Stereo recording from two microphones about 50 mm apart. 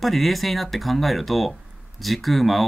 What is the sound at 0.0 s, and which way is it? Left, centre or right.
Speech, centre.